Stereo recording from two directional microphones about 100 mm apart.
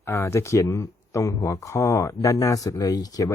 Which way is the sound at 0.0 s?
25° left (ahead or behind).